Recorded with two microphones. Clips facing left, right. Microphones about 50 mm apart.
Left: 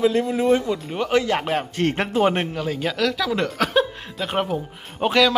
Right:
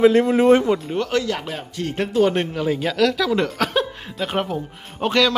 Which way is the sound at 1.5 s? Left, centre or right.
Left.